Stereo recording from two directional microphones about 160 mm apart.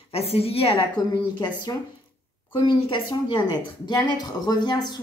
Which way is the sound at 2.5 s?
30° left (ahead or behind).